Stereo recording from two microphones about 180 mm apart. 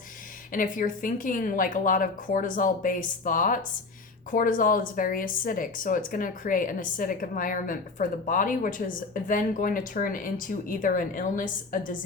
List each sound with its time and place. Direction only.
0.5 s speech: 50° left (ahead or behind)